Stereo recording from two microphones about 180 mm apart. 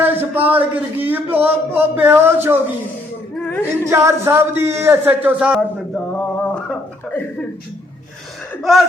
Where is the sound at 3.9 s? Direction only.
15° right (ahead or behind).